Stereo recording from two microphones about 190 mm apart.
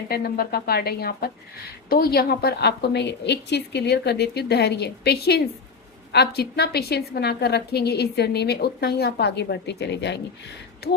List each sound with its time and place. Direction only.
0.1 s a woman's voice: 55° left (ahead or behind)